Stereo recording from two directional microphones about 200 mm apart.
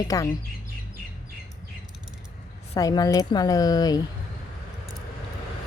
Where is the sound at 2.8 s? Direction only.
20° left (ahead or behind).